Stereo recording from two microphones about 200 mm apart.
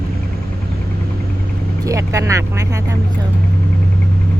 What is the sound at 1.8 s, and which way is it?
Speech, 15° right (ahead or behind).